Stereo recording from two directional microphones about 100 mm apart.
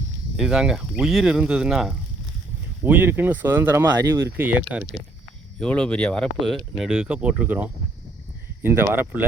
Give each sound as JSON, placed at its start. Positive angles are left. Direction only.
{"t": 0.3, "sound": "speech", "side_deg": -5}
{"t": 2.8, "sound": "speech", "side_deg": -20}
{"t": 4.4, "sound": "speech", "side_deg": -15}
{"t": 5.5, "sound": "speech", "side_deg": 10}
{"t": 6.4, "sound": "speech", "side_deg": -5}